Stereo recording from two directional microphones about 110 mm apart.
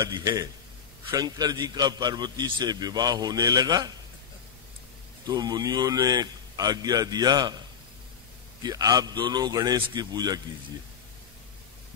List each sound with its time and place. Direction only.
0.1 s a man's voice: 35° right (ahead or behind)
5.3 s a man's voice: 40° right (ahead or behind)
8.6 s a man's voice: 35° right (ahead or behind)